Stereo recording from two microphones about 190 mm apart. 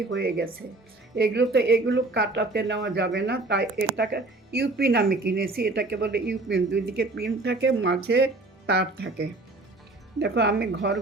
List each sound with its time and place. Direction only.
0.1 s speech: 55° right (ahead or behind)
7.4 s speech: 65° right (ahead or behind)